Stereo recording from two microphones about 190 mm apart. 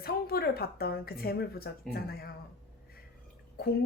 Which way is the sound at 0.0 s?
55° left (ahead or behind).